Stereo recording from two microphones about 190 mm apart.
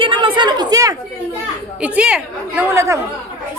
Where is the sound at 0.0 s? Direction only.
25° right (ahead or behind).